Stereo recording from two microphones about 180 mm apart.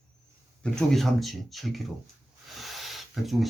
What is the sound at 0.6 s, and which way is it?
Speech, 5° left (ahead or behind).